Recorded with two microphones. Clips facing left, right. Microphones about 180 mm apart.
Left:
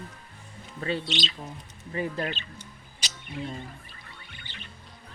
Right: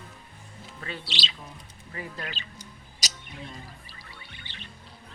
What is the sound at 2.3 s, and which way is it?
Music, 40° right (ahead or behind).